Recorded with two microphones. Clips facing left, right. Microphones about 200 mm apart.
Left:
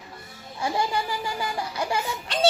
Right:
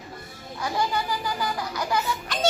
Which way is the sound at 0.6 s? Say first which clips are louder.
Left 1 dB; 25° left (ahead or behind).